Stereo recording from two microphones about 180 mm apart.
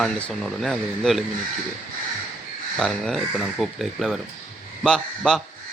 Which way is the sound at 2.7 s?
Centre (ahead or behind).